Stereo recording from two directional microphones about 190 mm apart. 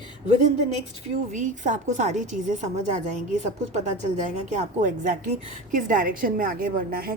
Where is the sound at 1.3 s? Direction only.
40° right (ahead or behind).